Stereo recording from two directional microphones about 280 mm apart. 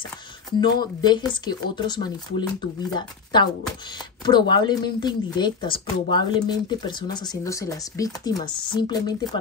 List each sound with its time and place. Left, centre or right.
0.6 s speech: centre